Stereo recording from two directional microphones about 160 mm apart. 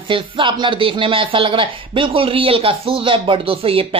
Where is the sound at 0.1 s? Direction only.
30° right (ahead or behind).